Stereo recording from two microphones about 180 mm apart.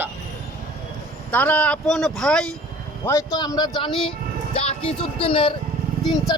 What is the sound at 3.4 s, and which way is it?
Speech, 20° left (ahead or behind).